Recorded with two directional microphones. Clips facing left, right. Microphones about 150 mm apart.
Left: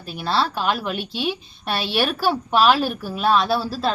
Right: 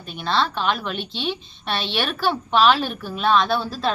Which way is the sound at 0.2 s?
5° left (ahead or behind).